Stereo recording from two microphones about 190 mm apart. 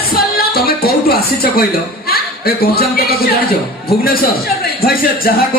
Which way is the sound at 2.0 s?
55° left (ahead or behind).